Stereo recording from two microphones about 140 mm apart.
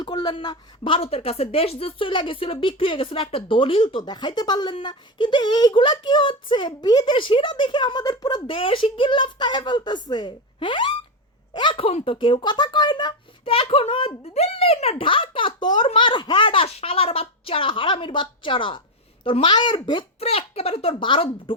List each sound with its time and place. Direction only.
0.0 s a woman's voice: 30° left (ahead or behind)
20.1 s a child's voice: 45° left (ahead or behind)